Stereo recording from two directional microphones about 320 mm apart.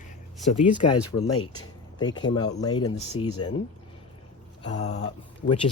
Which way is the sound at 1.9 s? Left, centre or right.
Centre.